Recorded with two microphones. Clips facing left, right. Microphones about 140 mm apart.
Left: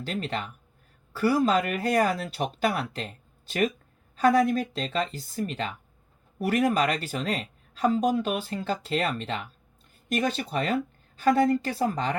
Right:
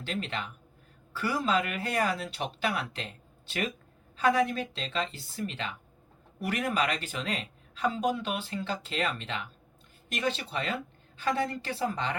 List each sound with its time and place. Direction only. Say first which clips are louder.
0.0 s speech: left 3 dB; 40° left (ahead or behind)